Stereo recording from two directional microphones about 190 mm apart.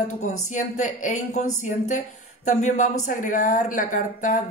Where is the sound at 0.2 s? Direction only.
40° left (ahead or behind).